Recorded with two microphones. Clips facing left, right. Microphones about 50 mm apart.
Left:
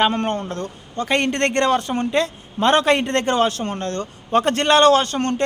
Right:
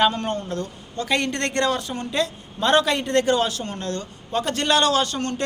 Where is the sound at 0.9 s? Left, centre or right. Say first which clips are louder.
Left 3 dB; left.